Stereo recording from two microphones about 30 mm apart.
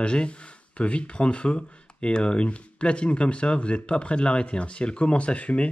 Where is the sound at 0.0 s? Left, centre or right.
Left.